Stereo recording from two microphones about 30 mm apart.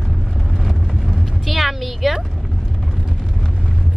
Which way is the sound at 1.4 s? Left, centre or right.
Centre.